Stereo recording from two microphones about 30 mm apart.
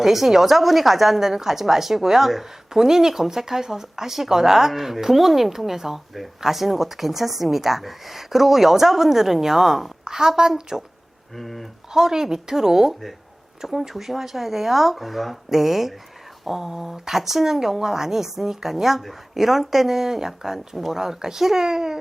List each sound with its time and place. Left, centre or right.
0.0 s a woman's voice: centre
10.0 s a woman's voice: right
10.7 s a woman's voice: centre
11.3 s speech: centre
11.9 s a woman's voice: centre
12.9 s speech: centre
13.6 s a woman's voice: centre